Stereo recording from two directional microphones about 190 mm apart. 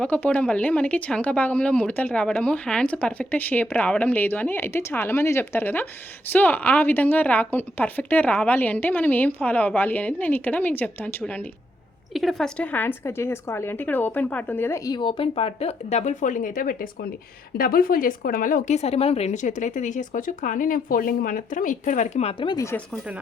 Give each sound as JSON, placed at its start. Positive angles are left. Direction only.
{"t": 0.0, "sound": "speech", "side_deg": 5}